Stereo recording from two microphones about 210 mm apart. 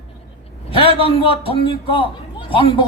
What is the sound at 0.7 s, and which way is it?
A man's voice, 25° left (ahead or behind).